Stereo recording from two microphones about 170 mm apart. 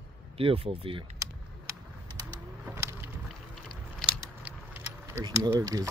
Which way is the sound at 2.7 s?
15° right (ahead or behind).